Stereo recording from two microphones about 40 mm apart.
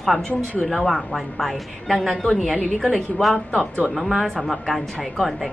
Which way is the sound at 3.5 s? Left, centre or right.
Left.